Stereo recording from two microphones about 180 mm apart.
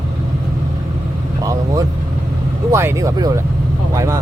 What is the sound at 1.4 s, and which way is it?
Vehicle, 20° right (ahead or behind).